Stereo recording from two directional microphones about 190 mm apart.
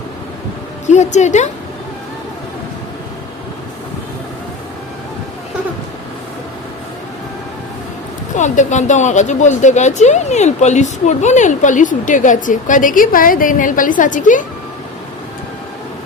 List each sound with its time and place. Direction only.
0.9 s a woman's voice: 40° left (ahead or behind)
8.4 s a woman's voice: 40° left (ahead or behind)